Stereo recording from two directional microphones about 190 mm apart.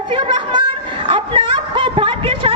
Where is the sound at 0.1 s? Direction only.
25° right (ahead or behind).